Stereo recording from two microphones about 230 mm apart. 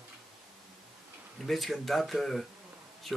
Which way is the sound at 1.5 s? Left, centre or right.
Centre.